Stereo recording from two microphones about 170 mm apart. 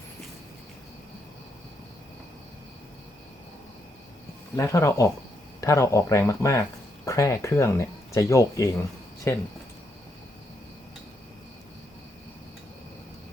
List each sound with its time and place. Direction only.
4.5 s speech: 20° left (ahead or behind)